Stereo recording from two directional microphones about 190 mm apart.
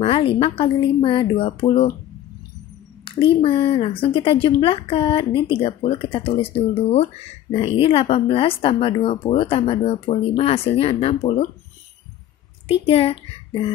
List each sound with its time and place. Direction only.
0.0 s speech: 30° left (ahead or behind)
3.1 s a sound: 30° left (ahead or behind)
3.3 s speech: 30° left (ahead or behind)
12.6 s a child's voice: 30° left (ahead or behind)